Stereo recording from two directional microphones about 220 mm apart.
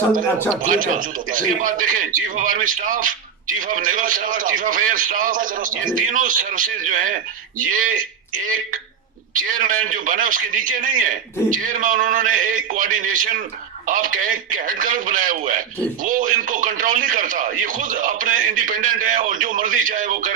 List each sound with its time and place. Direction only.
0.6 s a man's voice: 40° right (ahead or behind)